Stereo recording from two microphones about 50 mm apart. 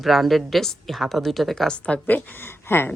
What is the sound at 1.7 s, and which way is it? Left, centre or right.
Speech, left.